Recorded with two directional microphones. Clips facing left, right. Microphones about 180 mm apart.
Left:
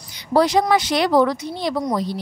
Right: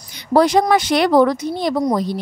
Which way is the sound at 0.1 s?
55° right (ahead or behind).